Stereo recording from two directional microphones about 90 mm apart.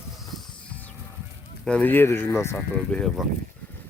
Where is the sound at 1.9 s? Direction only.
25° left (ahead or behind).